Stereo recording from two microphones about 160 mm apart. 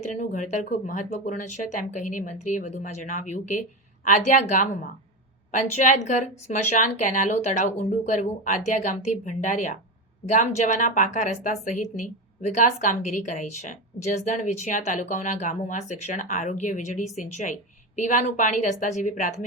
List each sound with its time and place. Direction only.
0.1 s speech: 50° left (ahead or behind)